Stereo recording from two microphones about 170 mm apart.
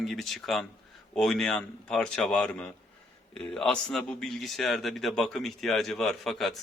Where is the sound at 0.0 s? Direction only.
Centre (ahead or behind).